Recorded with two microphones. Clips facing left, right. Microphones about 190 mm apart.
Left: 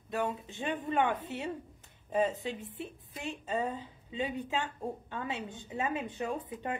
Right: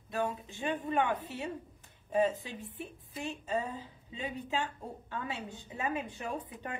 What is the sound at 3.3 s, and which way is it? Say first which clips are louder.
Speech: left 2 dB; 20° left (ahead or behind).